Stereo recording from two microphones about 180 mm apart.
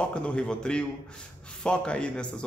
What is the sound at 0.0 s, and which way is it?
Speech, 5° left (ahead or behind).